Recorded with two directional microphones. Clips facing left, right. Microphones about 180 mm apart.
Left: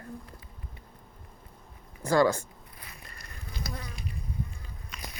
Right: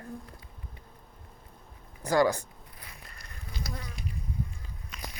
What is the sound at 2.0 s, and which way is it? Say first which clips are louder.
Speech: left 1 dB; 15° right (ahead or behind).